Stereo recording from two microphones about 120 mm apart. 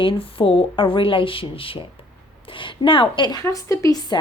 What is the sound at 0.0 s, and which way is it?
Speech, 45° left (ahead or behind).